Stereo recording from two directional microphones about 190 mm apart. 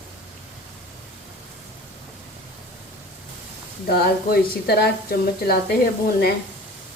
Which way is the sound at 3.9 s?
55° left (ahead or behind).